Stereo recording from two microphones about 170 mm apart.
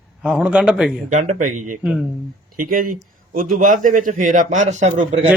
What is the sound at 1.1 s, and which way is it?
Speech, 45° right (ahead or behind).